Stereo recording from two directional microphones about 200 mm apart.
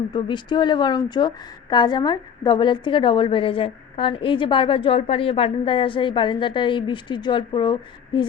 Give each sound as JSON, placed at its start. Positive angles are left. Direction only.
{"t": 0.1, "sound": "a woman's voice", "side_deg": 25}